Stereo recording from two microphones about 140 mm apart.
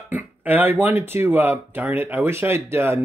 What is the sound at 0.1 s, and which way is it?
Speech, 10° right (ahead or behind).